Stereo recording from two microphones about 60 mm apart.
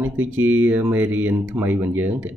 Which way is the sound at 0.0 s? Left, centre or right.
Right.